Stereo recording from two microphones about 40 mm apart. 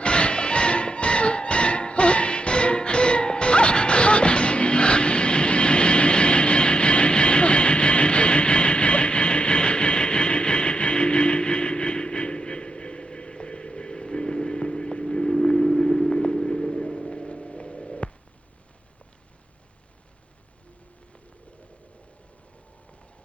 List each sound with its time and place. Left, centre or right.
0.0 s music: left